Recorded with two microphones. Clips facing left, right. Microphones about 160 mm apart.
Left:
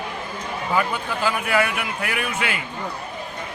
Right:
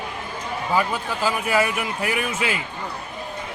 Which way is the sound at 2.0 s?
35° right (ahead or behind).